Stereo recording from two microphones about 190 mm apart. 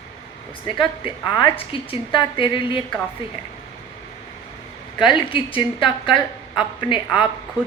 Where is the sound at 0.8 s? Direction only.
25° left (ahead or behind).